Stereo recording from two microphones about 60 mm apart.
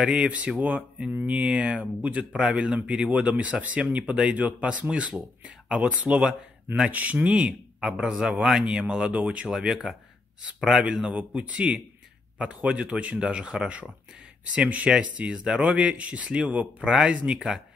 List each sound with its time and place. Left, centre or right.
0.0 s speech: centre
7.3 s speech: centre
9.6 s speech: centre; by 13.2 s right
13.2 s speech: centre